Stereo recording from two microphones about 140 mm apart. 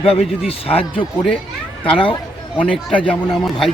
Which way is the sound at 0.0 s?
45° left (ahead or behind).